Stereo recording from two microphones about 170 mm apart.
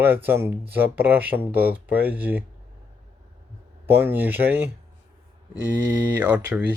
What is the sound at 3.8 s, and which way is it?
Speech, 10° right (ahead or behind).